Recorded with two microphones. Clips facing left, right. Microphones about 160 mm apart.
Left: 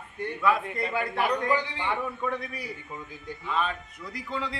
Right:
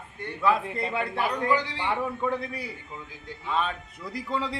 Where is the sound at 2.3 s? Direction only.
30° right (ahead or behind).